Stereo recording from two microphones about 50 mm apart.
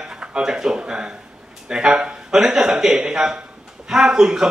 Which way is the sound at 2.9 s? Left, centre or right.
Centre.